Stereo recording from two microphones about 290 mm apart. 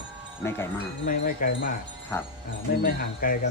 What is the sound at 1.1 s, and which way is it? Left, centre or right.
Speech, left.